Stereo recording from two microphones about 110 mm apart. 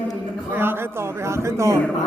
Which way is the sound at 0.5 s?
20° right (ahead or behind).